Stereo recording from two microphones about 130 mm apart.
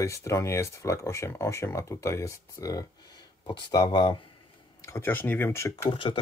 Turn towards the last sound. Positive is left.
turn(degrees=20)  # may be behind; listen again after turning